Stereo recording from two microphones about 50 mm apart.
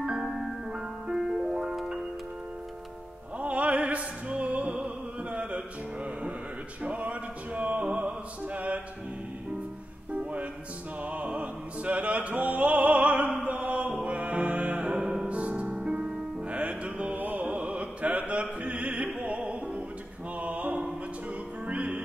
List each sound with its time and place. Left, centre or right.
0.0 s music: centre
3.3 s opera: right
4.7 s music: right
6.8 s music: right
11.0 s opera: right
15.2 s music: right
17.2 s music: right
21.6 s music: right